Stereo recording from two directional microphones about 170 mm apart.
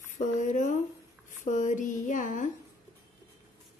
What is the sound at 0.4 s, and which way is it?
Speech, 50° left (ahead or behind).